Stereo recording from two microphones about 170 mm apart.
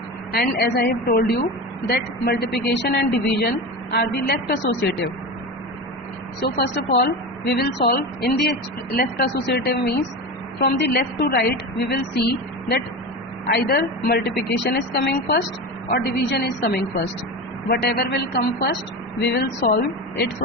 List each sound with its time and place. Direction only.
0.3 s a woman's voice: 70° left (ahead or behind)
2.6 s a woman's voice: 80° left
6.4 s a woman's voice: 70° left (ahead or behind)
10.6 s a woman's voice: 85° left
13.5 s a woman's voice: 70° left (ahead or behind)